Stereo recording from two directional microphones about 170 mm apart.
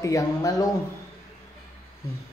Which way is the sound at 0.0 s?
20° left (ahead or behind).